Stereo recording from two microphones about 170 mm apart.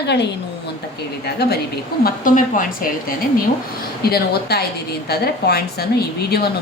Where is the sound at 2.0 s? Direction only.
50° left (ahead or behind).